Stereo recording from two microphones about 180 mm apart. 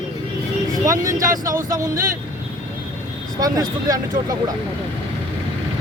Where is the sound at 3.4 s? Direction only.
20° right (ahead or behind).